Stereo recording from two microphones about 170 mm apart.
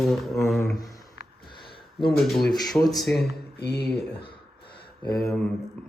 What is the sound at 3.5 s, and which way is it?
Speech, 75° left (ahead or behind).